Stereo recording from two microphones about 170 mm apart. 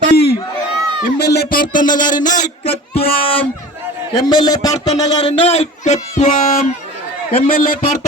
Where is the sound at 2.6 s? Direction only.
35° left (ahead or behind).